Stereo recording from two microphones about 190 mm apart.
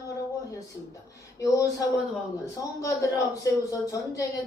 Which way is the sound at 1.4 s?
15° left (ahead or behind).